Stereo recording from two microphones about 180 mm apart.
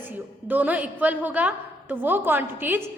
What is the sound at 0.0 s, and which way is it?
A woman's voice, 10° right (ahead or behind).